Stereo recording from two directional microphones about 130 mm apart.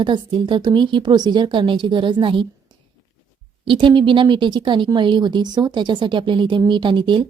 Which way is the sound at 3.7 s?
40° right (ahead or behind).